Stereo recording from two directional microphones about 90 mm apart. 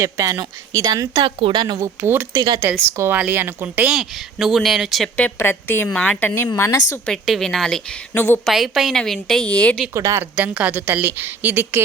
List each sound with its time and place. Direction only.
0.0 s speech: 40° right (ahead or behind)
1.2 s speech: 70° right (ahead or behind)
1.8 s a woman's voice: 30° right (ahead or behind)
3.8 s speech: 5° right (ahead or behind)
5.1 s a woman's voice: 20° left (ahead or behind)
6.6 s a woman's voice: 30° left (ahead or behind)
7.0 s speech: 5° left (ahead or behind)
8.1 s a woman's voice: 25° left (ahead or behind)
8.4 s speech: centre (ahead or behind)
9.4 s speech: 15° left (ahead or behind)
9.9 s speech: 35° right (ahead or behind)
10.3 s a woman's voice: 15° right (ahead or behind)